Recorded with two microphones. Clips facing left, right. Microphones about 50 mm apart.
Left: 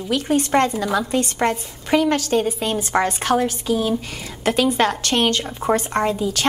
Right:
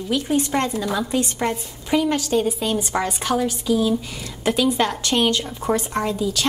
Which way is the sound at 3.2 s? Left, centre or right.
Left.